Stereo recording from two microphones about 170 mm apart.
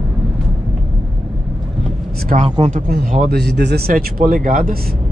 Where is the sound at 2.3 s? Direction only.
50° right (ahead or behind).